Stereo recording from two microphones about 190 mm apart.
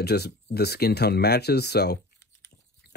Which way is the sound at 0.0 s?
60° left (ahead or behind).